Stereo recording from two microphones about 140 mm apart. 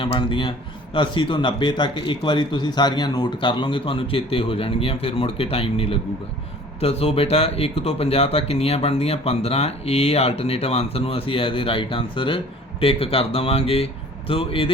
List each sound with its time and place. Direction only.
0.0 s a man's voice: 40° left (ahead or behind)